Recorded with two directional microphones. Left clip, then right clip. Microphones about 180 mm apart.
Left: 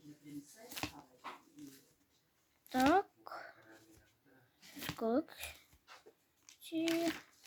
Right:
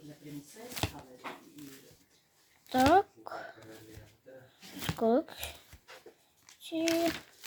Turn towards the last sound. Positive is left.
turn(degrees=5)  # may be behind; listen again after turning